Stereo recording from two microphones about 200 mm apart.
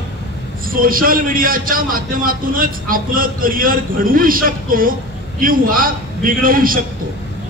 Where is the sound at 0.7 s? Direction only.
45° right (ahead or behind).